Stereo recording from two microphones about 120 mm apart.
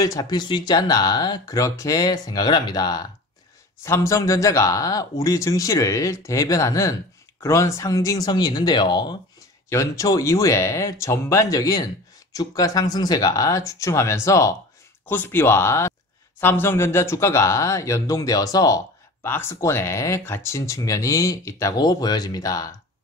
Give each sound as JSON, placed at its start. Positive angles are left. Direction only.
{"t": 0.0, "sound": "speech", "side_deg": 30}
{"t": 3.8, "sound": "a man's voice", "side_deg": 20}
{"t": 9.7, "sound": "a man's voice", "side_deg": 25}
{"t": 19.2, "sound": "a man's voice", "side_deg": 20}